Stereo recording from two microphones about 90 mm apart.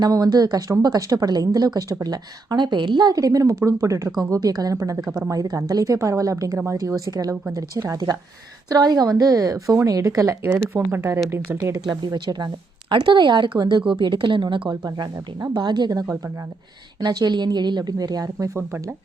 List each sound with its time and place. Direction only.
0.0 s a woman's voice: 45° right (ahead or behind)
10.6 s speech: 25° right (ahead or behind)
11.5 s a woman's voice: 35° right (ahead or behind)
11.9 s a woman's voice: 55° right (ahead or behind)
14.7 s speech: 50° right (ahead or behind); by 18.9 s 30° right (ahead or behind)